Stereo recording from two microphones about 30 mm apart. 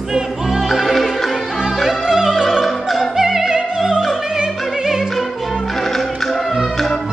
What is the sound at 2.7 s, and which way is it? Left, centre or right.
Opera, centre.